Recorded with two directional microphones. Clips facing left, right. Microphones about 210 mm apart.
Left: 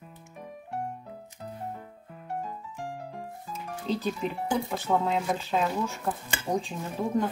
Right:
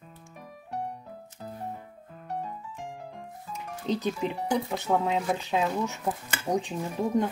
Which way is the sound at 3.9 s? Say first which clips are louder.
Right 1 dB; 20° right (ahead or behind).